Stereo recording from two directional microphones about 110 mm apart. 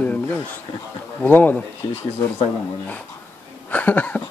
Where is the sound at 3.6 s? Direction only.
15° left (ahead or behind).